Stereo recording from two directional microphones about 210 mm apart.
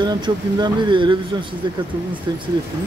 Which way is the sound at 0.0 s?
20° right (ahead or behind).